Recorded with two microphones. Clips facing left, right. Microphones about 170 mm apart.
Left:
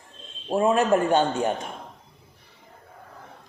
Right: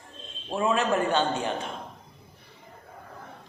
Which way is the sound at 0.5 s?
45° left (ahead or behind).